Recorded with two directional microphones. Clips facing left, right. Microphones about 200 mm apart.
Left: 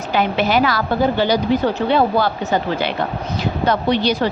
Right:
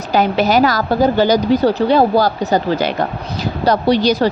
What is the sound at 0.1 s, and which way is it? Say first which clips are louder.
Speech: right 4 dB; 40° right (ahead or behind).